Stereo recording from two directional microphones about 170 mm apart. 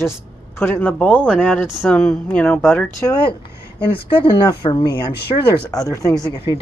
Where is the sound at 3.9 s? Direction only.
30° left (ahead or behind).